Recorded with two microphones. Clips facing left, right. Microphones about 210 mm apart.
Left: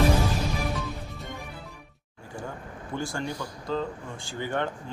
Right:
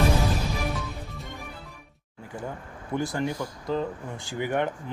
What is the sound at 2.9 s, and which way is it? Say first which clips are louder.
Speech: right 4 dB; 20° right (ahead or behind).